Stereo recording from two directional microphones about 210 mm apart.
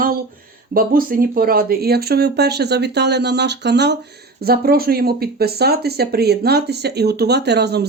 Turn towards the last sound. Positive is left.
turn(degrees=-50)  # may be behind; listen again after turning